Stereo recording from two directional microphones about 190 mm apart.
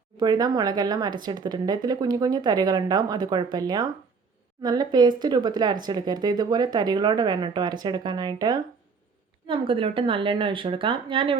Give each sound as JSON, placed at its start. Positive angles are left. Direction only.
{"t": 0.2, "sound": "speech", "side_deg": -20}